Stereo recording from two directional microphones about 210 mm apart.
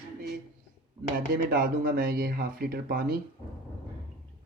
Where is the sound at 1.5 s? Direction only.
40° right (ahead or behind).